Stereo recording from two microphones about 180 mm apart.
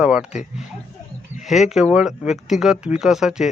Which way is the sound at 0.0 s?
5° right (ahead or behind).